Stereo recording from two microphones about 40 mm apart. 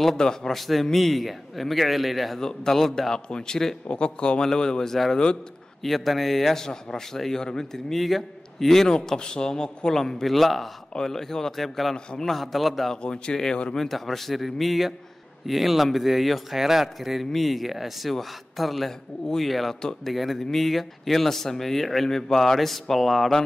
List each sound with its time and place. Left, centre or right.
0.0 s a man's voice: centre
0.6 s speech: centre
2.4 s a man's voice: centre
3.3 s a man's voice: left
5.1 s speech: left
5.8 s a man's voice: centre
12.9 s a man's voice: centre
13.7 s speech: centre